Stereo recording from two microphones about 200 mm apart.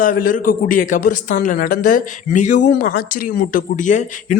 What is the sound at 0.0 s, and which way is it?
Speech, 45° left (ahead or behind).